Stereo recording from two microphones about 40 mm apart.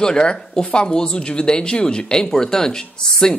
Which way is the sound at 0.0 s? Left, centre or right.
Left.